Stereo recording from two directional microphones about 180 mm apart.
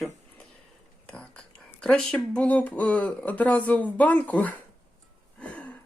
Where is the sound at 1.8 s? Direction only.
5° left (ahead or behind).